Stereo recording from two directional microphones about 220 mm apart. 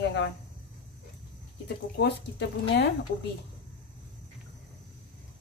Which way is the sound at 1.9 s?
50° left (ahead or behind).